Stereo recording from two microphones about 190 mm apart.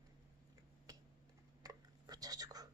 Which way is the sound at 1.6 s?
20° right (ahead or behind).